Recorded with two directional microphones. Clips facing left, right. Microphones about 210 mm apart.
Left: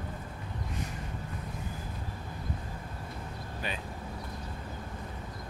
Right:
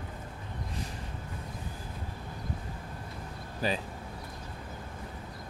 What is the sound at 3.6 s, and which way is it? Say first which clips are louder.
Speech: right 8 dB; 35° right (ahead or behind).